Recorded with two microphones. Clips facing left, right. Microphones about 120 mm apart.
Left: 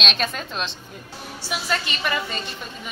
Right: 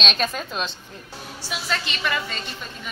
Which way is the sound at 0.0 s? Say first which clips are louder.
Right 1 dB; centre (ahead or behind).